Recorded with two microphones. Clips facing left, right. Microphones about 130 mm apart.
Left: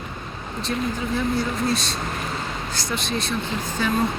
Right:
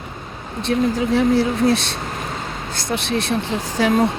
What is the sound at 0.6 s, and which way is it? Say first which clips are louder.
Speech: right 8 dB; 80° right.